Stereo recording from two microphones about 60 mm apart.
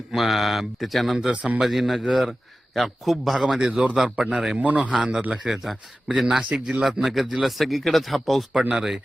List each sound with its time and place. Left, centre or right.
0.1 s speech: centre
1.4 s a man's voice: right
1.6 s speech: centre
4.5 s a man's voice: right
5.3 s speech: centre
6.5 s a man's voice: centre
6.9 s speech: centre